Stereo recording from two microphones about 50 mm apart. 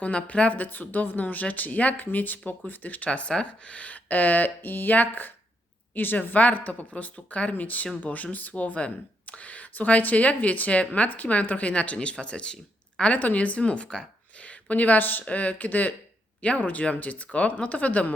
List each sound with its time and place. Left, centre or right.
0.0 s speech: left
3.1 s speech: left
13.1 s speech: left